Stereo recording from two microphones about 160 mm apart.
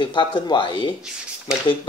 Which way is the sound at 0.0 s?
30° left (ahead or behind).